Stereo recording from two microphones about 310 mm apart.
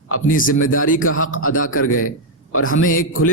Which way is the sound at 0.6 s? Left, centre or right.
Left.